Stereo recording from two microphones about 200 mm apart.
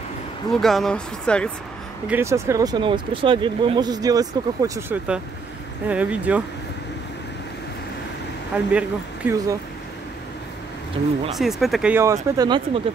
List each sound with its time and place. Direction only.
0.5 s speech: centre (ahead or behind)
2.0 s speech: 10° right (ahead or behind)
8.7 s speech: 10° right (ahead or behind)
11.3 s speech: centre (ahead or behind); by 12.8 s 25° right (ahead or behind)